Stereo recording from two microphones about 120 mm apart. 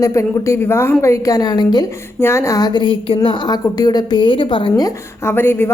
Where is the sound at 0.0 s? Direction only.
25° left (ahead or behind); by 3.2 s 45° left (ahead or behind).